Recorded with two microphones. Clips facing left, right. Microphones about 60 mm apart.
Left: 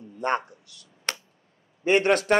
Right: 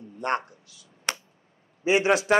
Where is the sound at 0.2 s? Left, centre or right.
Centre.